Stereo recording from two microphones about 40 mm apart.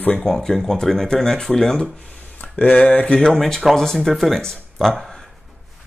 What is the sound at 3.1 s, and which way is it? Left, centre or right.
Speech, centre.